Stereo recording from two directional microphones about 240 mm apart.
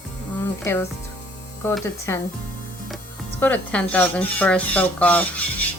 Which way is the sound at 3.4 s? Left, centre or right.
Centre.